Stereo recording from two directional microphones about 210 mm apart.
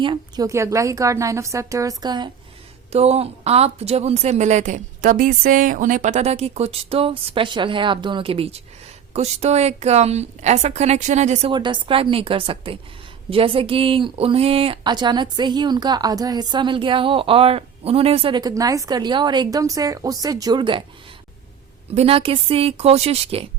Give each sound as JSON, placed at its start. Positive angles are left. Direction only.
{"t": 0.0, "sound": "a woman's voice", "side_deg": -20}
{"t": 11.5, "sound": "speech", "side_deg": -20}
{"t": 21.9, "sound": "speech", "side_deg": -25}